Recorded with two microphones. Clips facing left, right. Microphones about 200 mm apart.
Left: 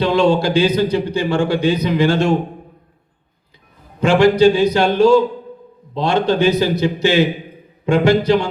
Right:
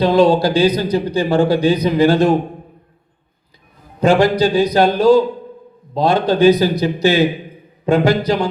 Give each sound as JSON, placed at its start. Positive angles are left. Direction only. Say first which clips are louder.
{"t": 0.0, "sound": "speech", "louder": "right 2 dB", "side_deg": -35}
{"t": 4.0, "sound": "speech", "louder": "left 2 dB", "side_deg": -40}